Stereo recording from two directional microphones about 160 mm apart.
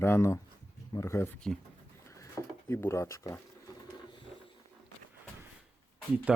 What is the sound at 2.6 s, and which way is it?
Speech, 15° left (ahead or behind).